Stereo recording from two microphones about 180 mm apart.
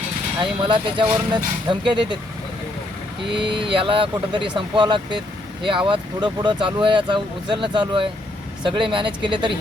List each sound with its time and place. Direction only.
0.3 s speech: 25° right (ahead or behind)
3.5 s speech: 30° right (ahead or behind)